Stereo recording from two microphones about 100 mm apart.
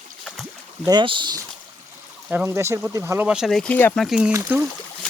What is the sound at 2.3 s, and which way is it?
Speech, 20° right (ahead or behind).